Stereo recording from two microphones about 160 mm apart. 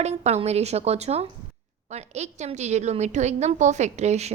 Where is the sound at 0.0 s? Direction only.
45° right (ahead or behind).